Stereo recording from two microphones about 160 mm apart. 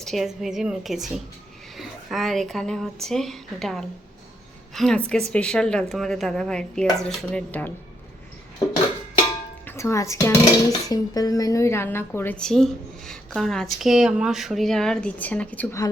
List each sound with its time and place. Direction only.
0.0 s a woman's voice: centre (ahead or behind)
9.6 s a woman's voice: 20° left (ahead or behind)